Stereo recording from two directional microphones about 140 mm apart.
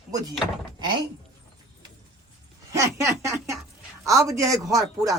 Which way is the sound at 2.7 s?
20° right (ahead or behind).